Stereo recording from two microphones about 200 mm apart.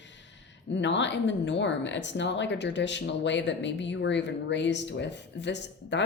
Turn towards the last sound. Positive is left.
turn(degrees=60)  # may be behind; listen again after turning